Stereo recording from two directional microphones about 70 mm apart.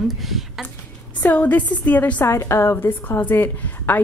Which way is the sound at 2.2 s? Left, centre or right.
Left.